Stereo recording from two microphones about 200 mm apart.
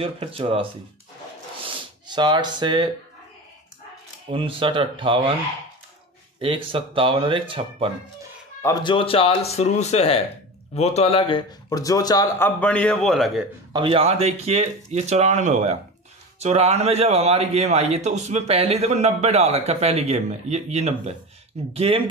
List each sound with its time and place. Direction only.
0.0 s speech: 25° right (ahead or behind)
2.0 s speech: 20° right (ahead or behind)
4.3 s speech: 25° right (ahead or behind)
6.4 s speech: 25° right (ahead or behind)
8.6 s speech: 25° left (ahead or behind); by 13.5 s centre (ahead or behind)
13.7 s a man's voice: 25° right (ahead or behind)